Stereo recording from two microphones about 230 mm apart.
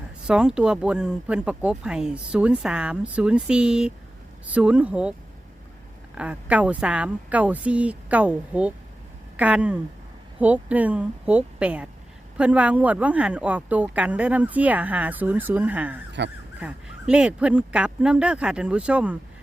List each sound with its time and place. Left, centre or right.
0.3 s speech: centre
6.1 s speech: centre
16.2 s speech: right
16.6 s speech: centre